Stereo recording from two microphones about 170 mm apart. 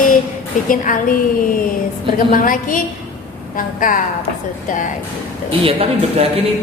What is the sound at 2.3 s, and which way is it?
A woman's voice, 55° left (ahead or behind).